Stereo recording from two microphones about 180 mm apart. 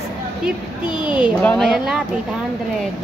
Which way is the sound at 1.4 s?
5° left (ahead or behind).